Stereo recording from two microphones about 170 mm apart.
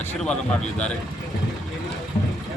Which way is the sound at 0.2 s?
5° left (ahead or behind).